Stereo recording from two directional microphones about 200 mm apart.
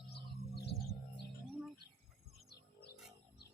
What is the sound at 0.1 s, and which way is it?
Bird, 55° left (ahead or behind).